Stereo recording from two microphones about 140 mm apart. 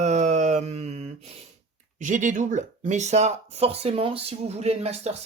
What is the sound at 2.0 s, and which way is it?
Speech, 65° right (ahead or behind).